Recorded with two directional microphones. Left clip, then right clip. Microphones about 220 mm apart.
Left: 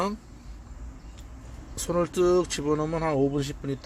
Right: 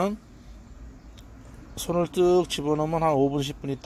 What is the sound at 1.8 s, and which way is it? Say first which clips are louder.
Speech: right 1 dB; 10° right (ahead or behind).